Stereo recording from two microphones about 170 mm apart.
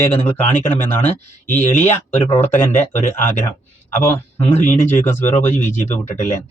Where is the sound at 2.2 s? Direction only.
30° left (ahead or behind).